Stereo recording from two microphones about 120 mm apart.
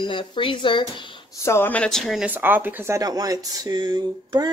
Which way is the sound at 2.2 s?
15° right (ahead or behind).